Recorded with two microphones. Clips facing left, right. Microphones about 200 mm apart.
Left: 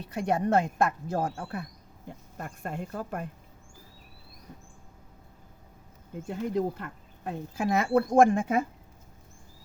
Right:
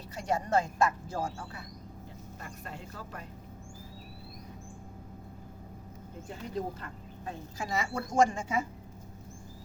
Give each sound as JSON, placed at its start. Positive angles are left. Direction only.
{"t": 0.0, "sound": "speech", "side_deg": 60}
{"t": 6.2, "sound": "speech", "side_deg": 60}